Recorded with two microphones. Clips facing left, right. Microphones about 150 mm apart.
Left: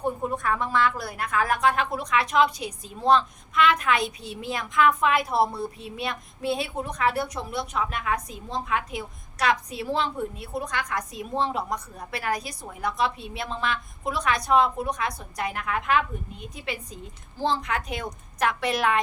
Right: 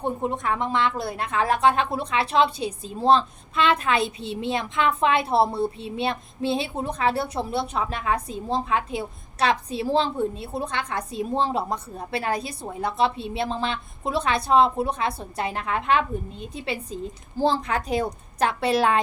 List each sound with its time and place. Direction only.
0.0 s a woman's voice: 20° right (ahead or behind)